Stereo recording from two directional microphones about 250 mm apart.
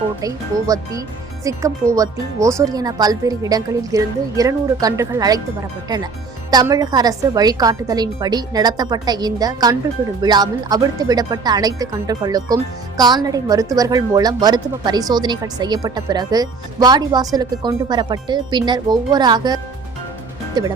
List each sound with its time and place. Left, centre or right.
0.2 s speech: centre
6.5 s speech: centre
20.6 s speech: centre